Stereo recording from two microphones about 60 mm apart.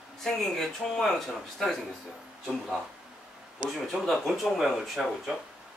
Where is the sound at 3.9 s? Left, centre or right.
Centre.